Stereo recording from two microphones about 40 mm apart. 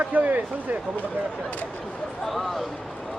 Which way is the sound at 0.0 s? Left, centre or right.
Right.